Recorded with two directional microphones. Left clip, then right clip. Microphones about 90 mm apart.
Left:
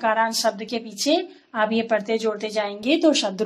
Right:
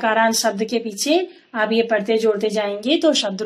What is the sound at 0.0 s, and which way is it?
Speech, 15° right (ahead or behind).